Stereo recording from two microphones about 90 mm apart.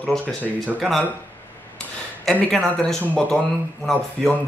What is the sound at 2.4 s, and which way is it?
Speech, 5° left (ahead or behind).